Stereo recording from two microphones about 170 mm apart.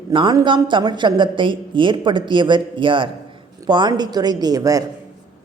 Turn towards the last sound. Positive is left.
turn(degrees=-20)  # may be behind; listen again after turning